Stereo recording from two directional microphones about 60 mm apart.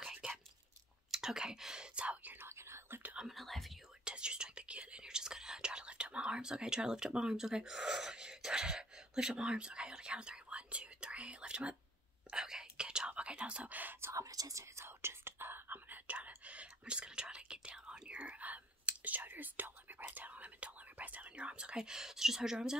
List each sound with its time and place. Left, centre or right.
1.1 s whispering: centre
2.3 s whispering: right
3.2 s whispering: centre
4.0 s whispering: centre
14.1 s whispering: right
14.9 s whispering: right; by 22.8 s centre